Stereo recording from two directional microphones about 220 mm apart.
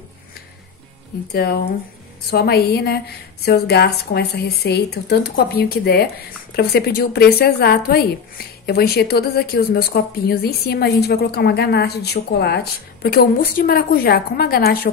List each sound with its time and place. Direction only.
1.3 s a woman's voice: 45° left (ahead or behind)